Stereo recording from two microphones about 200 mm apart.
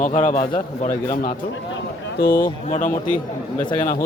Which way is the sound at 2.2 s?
50° left (ahead or behind).